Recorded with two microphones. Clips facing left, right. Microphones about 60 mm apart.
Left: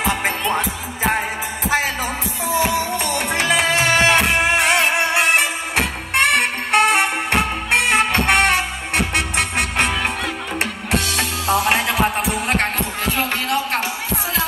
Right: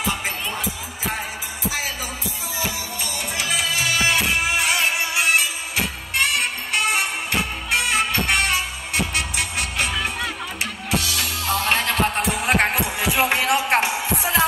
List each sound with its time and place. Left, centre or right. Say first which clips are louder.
0.0 s music: left 5 dB; left
2.4 s music: left 11 dB; left
11.4 s music: left 4 dB; centre
12.2 s music: even; centre; by 14.4 s right